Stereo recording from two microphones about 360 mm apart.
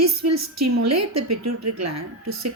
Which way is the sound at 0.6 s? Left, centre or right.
Right.